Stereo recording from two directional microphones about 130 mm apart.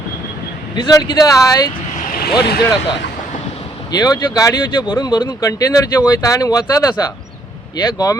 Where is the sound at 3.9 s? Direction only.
30° left (ahead or behind).